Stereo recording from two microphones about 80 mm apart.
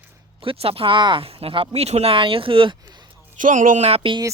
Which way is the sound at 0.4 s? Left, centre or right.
Right.